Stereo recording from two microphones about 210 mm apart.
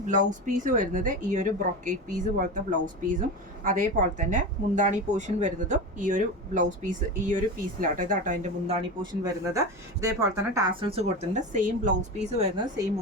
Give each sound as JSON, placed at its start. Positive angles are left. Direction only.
{"t": 0.3, "sound": "a woman's voice", "side_deg": -35}
{"t": 9.2, "sound": "speech", "side_deg": -15}